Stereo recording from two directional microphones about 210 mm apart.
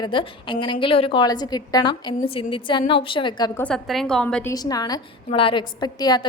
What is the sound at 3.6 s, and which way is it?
A woman's voice, centre (ahead or behind).